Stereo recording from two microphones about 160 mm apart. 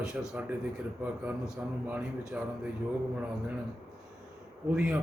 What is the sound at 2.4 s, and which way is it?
Speech, 5° right (ahead or behind).